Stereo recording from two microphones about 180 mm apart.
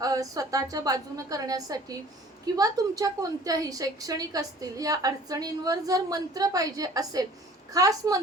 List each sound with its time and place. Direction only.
0.0 s a woman's voice: 20° right (ahead or behind)